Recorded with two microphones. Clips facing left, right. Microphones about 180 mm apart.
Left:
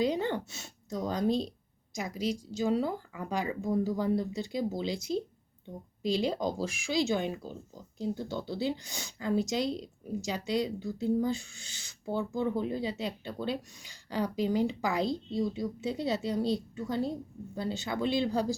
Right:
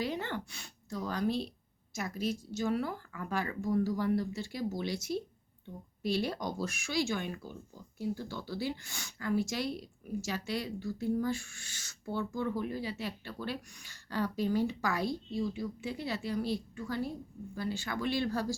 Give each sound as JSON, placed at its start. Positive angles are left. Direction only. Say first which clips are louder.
{"t": 0.0, "sound": "a woman's voice", "louder": "left 6 dB", "side_deg": 20}
{"t": 6.6, "sound": "speech", "louder": "left 2 dB", "side_deg": 90}
{"t": 6.9, "sound": "speech", "louder": "left 5 dB", "side_deg": 20}